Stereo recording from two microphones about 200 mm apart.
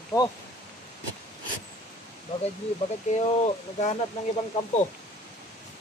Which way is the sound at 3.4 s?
35° left (ahead or behind).